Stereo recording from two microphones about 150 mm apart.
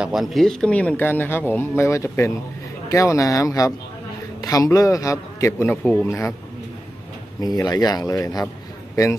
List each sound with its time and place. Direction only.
0.0 s a man's voice: centre (ahead or behind)
7.3 s a man's voice: 25° left (ahead or behind)